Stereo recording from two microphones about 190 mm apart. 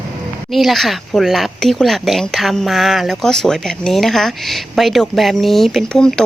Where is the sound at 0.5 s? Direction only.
Centre (ahead or behind).